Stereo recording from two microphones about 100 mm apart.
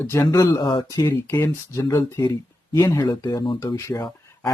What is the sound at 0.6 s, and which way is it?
Speech, 50° left (ahead or behind).